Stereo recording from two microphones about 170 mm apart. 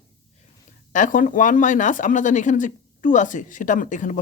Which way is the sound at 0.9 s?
50° left (ahead or behind).